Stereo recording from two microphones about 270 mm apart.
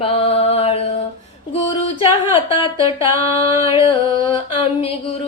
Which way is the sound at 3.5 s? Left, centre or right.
Centre.